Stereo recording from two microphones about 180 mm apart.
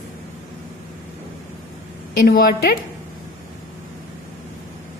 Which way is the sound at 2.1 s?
55° left (ahead or behind).